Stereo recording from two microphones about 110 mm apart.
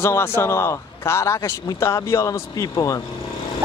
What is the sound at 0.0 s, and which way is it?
A man's voice, 20° left (ahead or behind).